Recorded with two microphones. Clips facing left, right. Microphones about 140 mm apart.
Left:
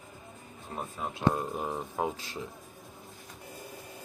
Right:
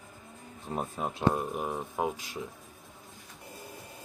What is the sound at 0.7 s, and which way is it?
Speech, 25° right (ahead or behind).